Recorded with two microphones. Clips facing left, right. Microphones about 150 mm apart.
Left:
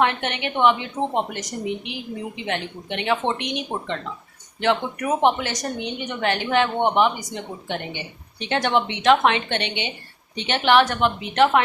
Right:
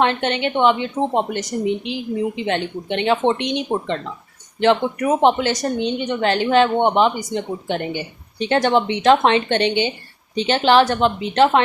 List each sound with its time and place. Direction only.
0.0 s speech: 30° right (ahead or behind)
5.2 s a woman's voice: 30° right (ahead or behind)